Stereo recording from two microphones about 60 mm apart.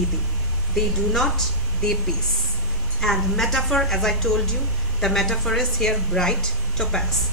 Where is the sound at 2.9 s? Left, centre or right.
Centre.